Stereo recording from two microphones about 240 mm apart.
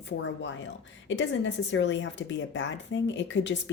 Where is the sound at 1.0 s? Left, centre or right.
Left.